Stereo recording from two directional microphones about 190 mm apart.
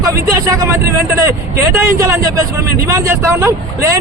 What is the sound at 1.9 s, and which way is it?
Speech, 15° right (ahead or behind).